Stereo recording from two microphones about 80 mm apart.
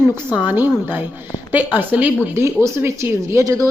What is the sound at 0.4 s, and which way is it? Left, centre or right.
A woman's voice, right.